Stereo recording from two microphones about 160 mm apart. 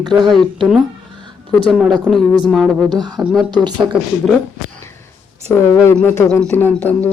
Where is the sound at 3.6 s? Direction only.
25° right (ahead or behind).